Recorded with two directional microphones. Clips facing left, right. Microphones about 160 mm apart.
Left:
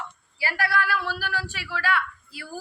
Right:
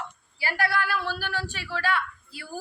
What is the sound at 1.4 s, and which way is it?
Speech, 5° left (ahead or behind).